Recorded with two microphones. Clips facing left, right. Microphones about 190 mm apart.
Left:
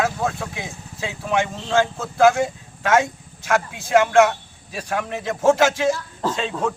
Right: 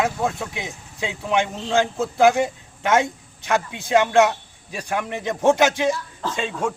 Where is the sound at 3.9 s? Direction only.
20° right (ahead or behind).